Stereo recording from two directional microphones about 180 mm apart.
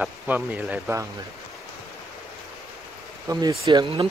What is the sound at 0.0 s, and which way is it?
A man's voice, 10° right (ahead or behind).